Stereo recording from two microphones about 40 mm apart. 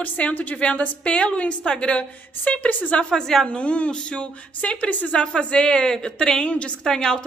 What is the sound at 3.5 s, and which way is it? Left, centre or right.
A woman's voice, left.